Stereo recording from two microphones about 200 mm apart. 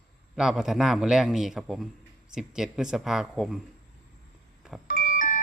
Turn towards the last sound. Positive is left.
turn(degrees=40)  # may be behind; listen again after turning